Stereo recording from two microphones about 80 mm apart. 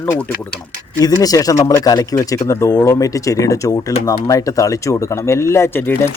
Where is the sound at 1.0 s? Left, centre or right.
Left.